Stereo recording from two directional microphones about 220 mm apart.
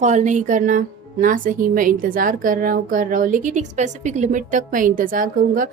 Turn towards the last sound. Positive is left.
turn(degrees=-40)  # may be behind; listen again after turning